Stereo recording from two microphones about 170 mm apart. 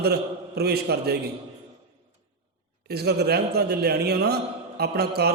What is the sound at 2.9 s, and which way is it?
A man's voice, 70° right (ahead or behind).